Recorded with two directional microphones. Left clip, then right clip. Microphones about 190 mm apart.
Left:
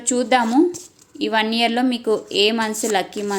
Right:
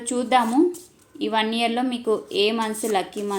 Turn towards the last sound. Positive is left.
turn(degrees=25)  # may be behind; listen again after turning